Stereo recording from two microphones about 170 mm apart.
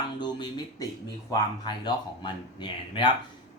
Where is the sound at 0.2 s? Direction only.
25° left (ahead or behind).